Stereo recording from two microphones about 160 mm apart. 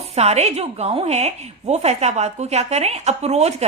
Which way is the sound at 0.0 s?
40° right (ahead or behind).